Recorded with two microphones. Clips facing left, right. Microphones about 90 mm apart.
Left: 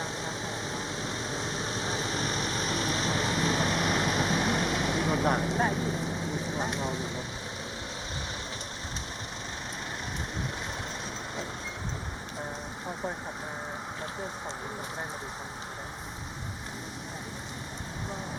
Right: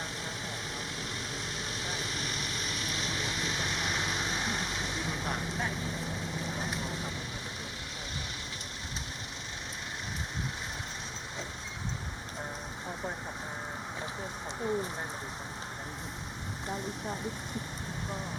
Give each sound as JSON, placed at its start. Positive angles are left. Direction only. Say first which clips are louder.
{"t": 0.0, "sound": "vehicle", "louder": "left 4 dB", "side_deg": 25}